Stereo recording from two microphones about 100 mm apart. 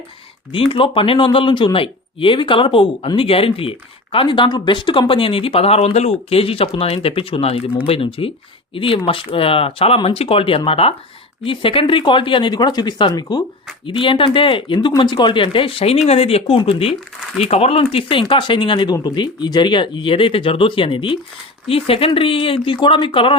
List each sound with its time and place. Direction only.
0.5 s speech: 65° left (ahead or behind)
11.4 s speech: 65° left (ahead or behind); by 13.1 s 45° left (ahead or behind)
13.8 s speech: 60° left (ahead or behind)
15.4 s speech: 65° left (ahead or behind)
16.0 s speech: 90° left
16.6 s speech: 65° left (ahead or behind)
17.4 s speech: 90° left; by 23.4 s 60° left (ahead or behind)